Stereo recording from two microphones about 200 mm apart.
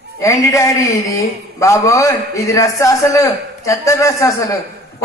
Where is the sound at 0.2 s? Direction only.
15° left (ahead or behind).